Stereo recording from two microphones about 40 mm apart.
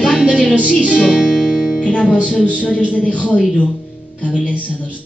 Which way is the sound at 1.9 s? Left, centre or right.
Left.